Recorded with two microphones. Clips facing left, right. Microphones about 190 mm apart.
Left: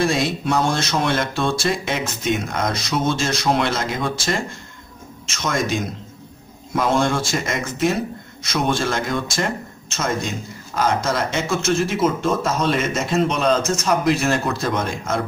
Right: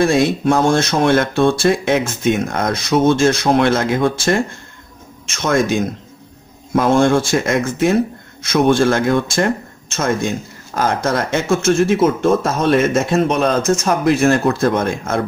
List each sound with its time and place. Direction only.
0.0 s speech: 50° right (ahead or behind)
6.7 s speech: 55° right (ahead or behind)
10.7 s speech: 55° right (ahead or behind)